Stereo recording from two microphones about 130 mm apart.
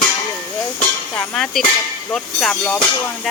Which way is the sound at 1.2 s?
5° left (ahead or behind).